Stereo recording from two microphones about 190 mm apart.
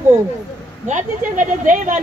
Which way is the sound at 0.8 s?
40° right (ahead or behind).